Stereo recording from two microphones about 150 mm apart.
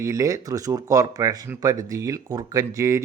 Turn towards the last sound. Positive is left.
turn(degrees=-20)  # may be behind; listen again after turning